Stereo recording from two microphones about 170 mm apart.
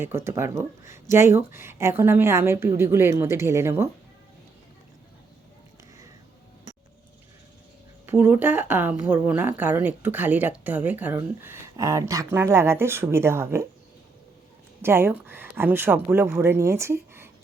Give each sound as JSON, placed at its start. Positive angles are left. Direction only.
{"t": 0.0, "sound": "speech", "side_deg": -15}
{"t": 8.0, "sound": "speech", "side_deg": -10}
{"t": 14.8, "sound": "speech", "side_deg": -15}